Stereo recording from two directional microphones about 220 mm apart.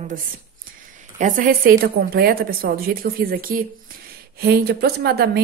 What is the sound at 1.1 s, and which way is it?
A woman's voice, 35° right (ahead or behind).